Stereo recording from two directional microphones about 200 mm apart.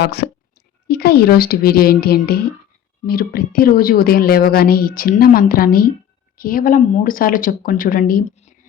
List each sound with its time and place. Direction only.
0.0 s a woman's voice: 55° left (ahead or behind)